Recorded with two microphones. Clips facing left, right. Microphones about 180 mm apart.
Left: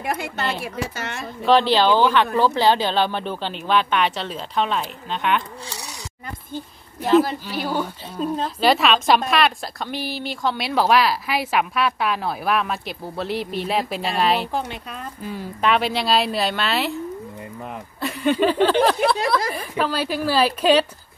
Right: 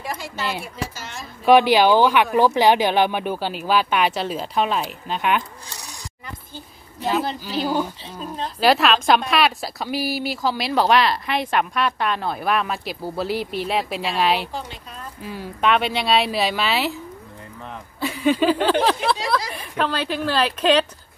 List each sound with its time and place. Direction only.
0.0 s a sound: 60° left (ahead or behind)
0.9 s speech: 60° left (ahead or behind)
1.4 s speech: 10° right (ahead or behind)
5.7 s speech: 75° left (ahead or behind)
7.6 s speech: 5° right (ahead or behind)
14.5 s speech: 60° left (ahead or behind)
15.2 s speech: centre (ahead or behind)
18.0 s a woman's voice: centre (ahead or behind)